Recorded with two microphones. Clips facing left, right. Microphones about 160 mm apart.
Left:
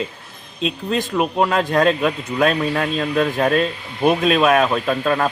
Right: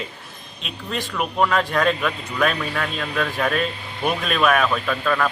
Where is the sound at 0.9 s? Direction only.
30° left (ahead or behind).